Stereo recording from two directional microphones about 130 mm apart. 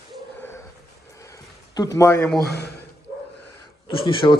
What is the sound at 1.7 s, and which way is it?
Speech, 30° left (ahead or behind).